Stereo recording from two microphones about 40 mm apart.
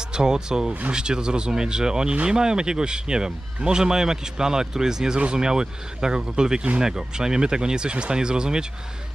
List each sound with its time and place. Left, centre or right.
0.0 s a man's voice: centre